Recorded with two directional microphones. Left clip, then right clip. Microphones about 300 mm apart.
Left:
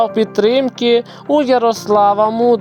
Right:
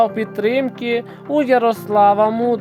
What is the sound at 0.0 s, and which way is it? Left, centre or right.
Speech, centre.